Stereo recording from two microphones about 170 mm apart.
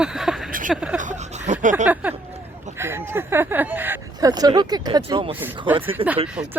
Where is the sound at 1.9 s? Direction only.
10° right (ahead or behind).